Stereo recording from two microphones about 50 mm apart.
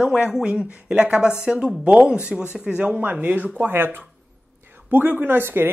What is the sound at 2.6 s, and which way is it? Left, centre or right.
Speech, right.